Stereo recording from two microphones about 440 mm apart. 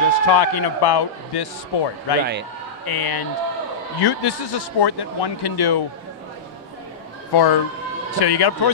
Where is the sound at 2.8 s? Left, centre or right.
Left.